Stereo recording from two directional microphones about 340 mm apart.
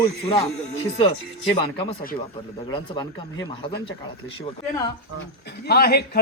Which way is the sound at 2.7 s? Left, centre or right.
Centre.